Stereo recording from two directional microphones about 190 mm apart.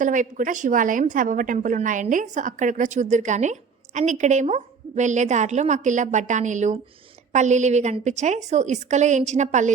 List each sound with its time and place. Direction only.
0.0 s a woman's voice: 45° right (ahead or behind)